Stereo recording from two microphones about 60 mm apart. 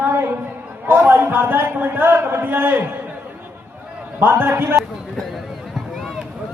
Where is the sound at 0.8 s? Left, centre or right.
Right.